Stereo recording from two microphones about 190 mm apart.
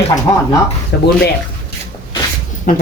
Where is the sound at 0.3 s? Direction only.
15° left (ahead or behind).